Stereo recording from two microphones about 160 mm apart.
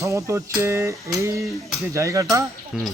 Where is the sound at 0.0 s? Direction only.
20° right (ahead or behind).